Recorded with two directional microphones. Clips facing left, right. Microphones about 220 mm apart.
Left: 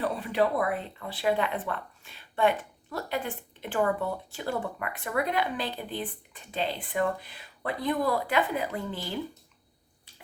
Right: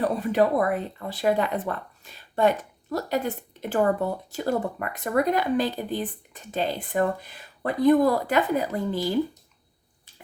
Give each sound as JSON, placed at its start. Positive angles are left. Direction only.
{"t": 0.0, "sound": "speech", "side_deg": -45}